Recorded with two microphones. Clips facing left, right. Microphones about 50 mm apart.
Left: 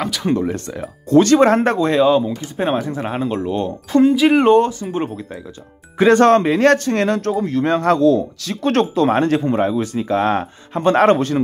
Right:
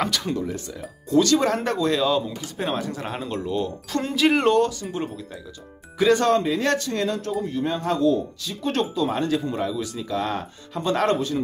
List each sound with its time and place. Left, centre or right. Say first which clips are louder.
0.3 s speech: left 8 dB; left
4.0 s speech: left 8 dB; centre
4.5 s speech: left 6 dB; left
5.9 s speech: left 7 dB; left